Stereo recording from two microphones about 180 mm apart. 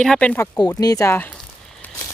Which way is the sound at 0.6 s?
20° left (ahead or behind).